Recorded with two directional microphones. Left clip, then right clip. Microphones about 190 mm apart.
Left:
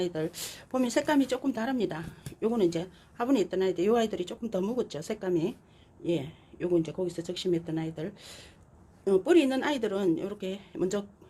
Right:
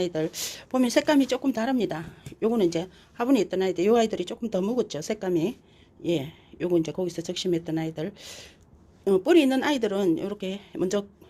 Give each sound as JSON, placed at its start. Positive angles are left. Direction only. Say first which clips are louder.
{"t": 0.0, "sound": "speech", "louder": "right 4 dB", "side_deg": -30}